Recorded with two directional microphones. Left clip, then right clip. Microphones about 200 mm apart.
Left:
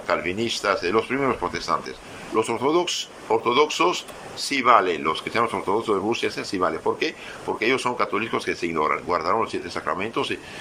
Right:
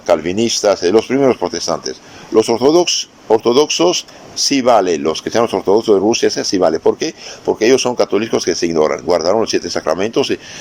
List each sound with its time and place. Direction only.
0.0 s speech: 40° right (ahead or behind)